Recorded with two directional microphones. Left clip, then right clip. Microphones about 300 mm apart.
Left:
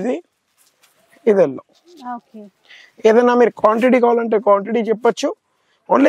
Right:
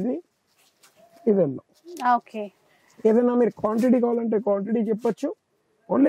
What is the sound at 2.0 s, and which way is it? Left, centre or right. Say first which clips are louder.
Speech: right 9 dB; centre.